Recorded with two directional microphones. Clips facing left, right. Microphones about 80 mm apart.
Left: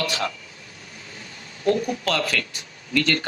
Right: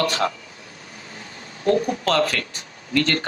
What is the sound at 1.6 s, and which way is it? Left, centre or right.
Speech, right.